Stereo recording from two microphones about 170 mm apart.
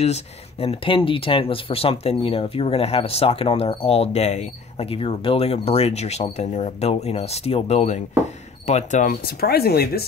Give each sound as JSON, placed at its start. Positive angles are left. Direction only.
{"t": 0.0, "sound": "speech", "side_deg": 40}